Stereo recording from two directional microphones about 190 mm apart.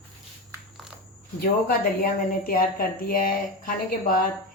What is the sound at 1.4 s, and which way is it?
A woman's voice, 50° left (ahead or behind).